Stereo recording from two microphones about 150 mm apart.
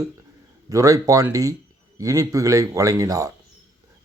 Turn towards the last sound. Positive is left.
turn(degrees=-20)  # may be behind; listen again after turning